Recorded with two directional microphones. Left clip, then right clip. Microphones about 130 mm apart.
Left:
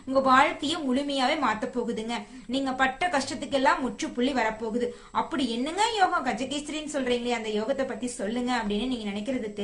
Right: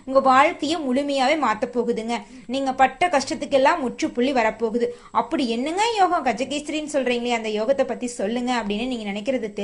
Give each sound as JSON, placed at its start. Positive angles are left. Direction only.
{"t": 0.1, "sound": "a woman's voice", "side_deg": -35}